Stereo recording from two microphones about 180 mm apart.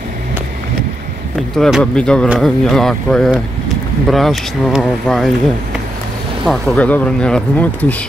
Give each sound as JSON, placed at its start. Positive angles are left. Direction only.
{"t": 1.6, "sound": "speech", "side_deg": 0}
{"t": 6.4, "sound": "speech", "side_deg": 5}